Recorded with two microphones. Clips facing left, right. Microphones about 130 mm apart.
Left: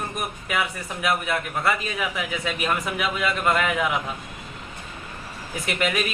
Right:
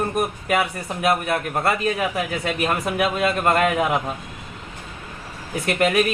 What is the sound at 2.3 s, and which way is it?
Speech, 55° right (ahead or behind).